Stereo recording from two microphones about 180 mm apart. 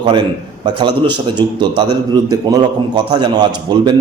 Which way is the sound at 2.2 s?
20° right (ahead or behind).